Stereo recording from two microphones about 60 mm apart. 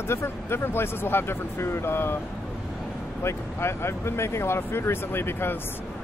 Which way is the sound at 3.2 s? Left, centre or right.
Left.